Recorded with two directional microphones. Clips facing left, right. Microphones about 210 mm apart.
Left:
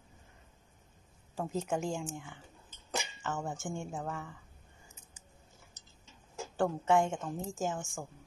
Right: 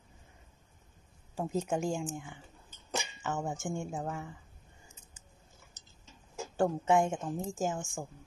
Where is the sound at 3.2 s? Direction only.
15° right (ahead or behind).